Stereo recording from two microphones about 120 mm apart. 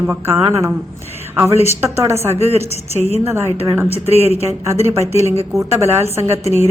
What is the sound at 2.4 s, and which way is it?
Speech, 60° right (ahead or behind).